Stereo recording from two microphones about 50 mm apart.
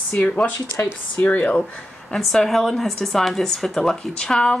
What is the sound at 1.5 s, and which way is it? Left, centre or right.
Speech, centre.